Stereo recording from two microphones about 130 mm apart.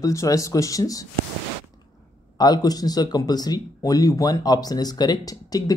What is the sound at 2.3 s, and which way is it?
Speech, 30° left (ahead or behind).